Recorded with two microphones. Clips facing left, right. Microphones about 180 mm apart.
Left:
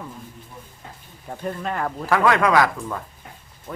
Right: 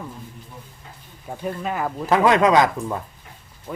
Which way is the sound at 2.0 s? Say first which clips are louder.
Right 3 dB; 20° right (ahead or behind).